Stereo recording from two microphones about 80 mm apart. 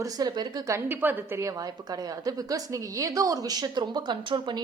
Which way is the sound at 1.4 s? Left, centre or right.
Right.